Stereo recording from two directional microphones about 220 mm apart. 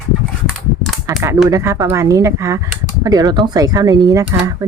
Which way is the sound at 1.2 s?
10° right (ahead or behind).